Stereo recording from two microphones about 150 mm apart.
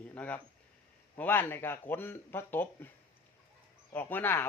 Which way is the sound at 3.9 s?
10° left (ahead or behind).